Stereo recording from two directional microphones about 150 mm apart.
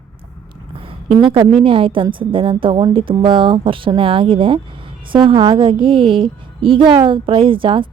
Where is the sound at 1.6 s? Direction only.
35° right (ahead or behind).